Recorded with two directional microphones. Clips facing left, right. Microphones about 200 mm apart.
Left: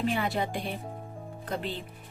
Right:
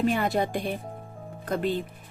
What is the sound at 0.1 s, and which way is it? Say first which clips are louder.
Speech: right 4 dB; 45° right (ahead or behind).